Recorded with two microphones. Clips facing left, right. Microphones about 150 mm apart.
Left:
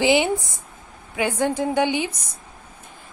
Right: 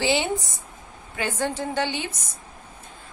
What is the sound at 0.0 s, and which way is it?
A woman's voice, 15° left (ahead or behind).